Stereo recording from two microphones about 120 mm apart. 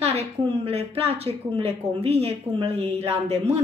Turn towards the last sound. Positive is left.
turn(degrees=-65)  # may be behind; listen again after turning